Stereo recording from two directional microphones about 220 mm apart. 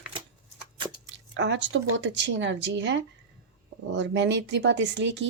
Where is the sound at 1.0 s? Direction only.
55° right (ahead or behind).